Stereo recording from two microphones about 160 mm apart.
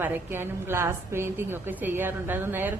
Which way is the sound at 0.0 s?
15° right (ahead or behind).